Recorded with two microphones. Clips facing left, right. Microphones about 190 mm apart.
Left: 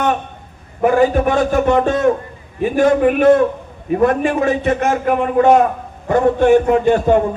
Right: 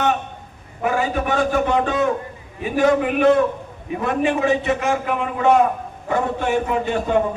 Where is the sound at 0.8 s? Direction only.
50° left (ahead or behind).